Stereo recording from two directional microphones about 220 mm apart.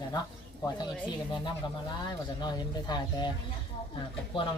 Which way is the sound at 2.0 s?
20° left (ahead or behind).